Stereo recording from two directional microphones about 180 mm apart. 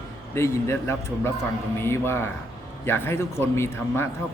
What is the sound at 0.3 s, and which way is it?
Speech, 15° left (ahead or behind).